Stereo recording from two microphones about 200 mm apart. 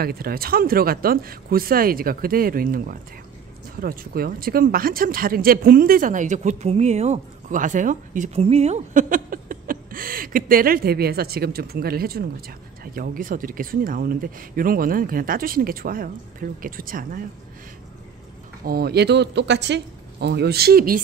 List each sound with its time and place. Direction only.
0.0 s speech: 50° right (ahead or behind)
18.6 s speech: 50° right (ahead or behind)